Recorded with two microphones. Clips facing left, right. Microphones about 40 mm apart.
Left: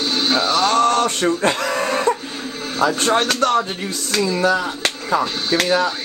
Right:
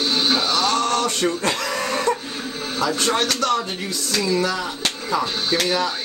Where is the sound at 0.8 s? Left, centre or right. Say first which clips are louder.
Left 4 dB; left.